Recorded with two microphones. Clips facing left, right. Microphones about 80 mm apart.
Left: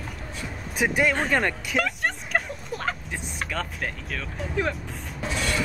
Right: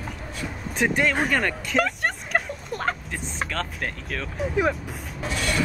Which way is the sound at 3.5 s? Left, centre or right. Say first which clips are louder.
Left 2 dB; centre.